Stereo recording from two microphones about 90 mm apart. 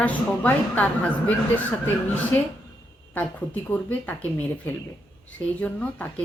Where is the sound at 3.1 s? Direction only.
15° left (ahead or behind).